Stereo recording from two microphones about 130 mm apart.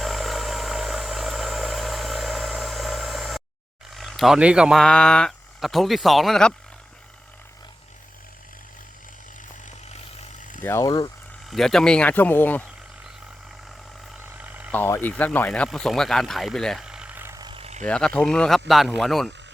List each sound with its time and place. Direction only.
0.0 s vehicle: centre (ahead or behind)
3.8 s a sound: centre (ahead or behind)
4.8 s speech: 5° left (ahead or behind)
10.6 s speech: 20° left (ahead or behind)
10.8 s speech: 30° left (ahead or behind)
11.4 s speech: centre (ahead or behind)
14.2 s a sound: 10° right (ahead or behind)
14.7 s speech: 15° left (ahead or behind); by 17.3 s 15° right (ahead or behind)
17.5 s vehicle: 50° right (ahead or behind)
17.8 s speech: 10° left (ahead or behind)